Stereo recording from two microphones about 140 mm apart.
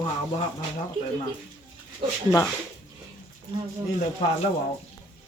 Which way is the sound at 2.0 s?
35° right (ahead or behind).